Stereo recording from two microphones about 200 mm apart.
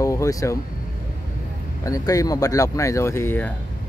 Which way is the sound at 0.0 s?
15° left (ahead or behind).